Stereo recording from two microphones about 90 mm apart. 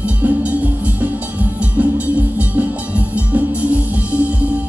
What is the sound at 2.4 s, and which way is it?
Music, 15° right (ahead or behind).